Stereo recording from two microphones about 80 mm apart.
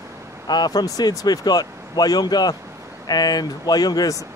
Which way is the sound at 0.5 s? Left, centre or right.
Left.